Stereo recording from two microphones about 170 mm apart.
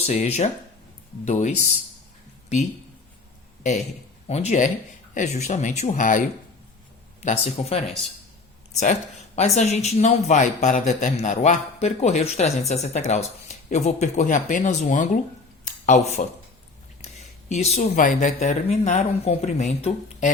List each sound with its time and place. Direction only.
0.0 s speech: 40° left (ahead or behind)
4.3 s speech: 40° left (ahead or behind)
15.6 s a sound: 45° left (ahead or behind)
17.5 s speech: 40° left (ahead or behind)